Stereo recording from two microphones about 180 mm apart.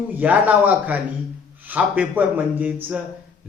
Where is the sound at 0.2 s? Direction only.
10° right (ahead or behind).